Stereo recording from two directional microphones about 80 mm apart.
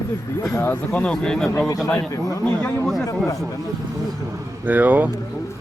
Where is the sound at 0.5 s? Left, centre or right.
Left.